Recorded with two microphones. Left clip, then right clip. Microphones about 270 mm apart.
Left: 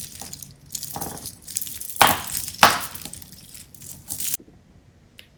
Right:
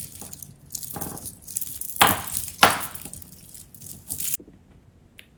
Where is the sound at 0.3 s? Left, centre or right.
Centre.